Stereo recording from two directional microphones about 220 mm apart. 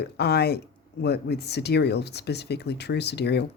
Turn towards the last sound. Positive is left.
turn(degrees=50)  # may be behind; listen again after turning